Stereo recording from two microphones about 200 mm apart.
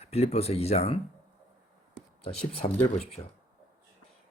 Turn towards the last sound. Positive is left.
turn(degrees=25)  # may be behind; listen again after turning